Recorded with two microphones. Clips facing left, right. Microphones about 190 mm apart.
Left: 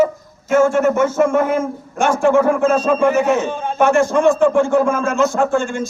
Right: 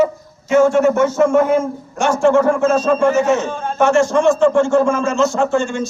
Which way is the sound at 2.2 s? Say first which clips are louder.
Right 1 dB; 15° left (ahead or behind).